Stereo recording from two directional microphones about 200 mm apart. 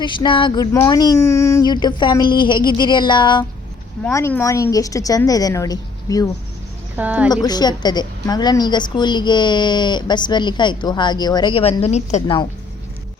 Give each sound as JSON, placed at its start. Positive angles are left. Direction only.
{"t": 0.0, "sound": "a woman's voice", "side_deg": 25}
{"t": 4.0, "sound": "a woman's voice", "side_deg": 10}
{"t": 6.9, "sound": "a woman's voice", "side_deg": -10}
{"t": 7.4, "sound": "a woman's voice", "side_deg": 20}